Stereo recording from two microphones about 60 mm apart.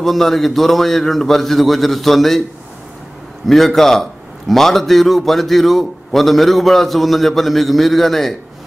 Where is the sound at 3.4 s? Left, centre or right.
Centre.